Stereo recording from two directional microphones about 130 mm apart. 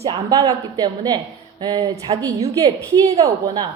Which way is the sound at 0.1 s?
30° right (ahead or behind).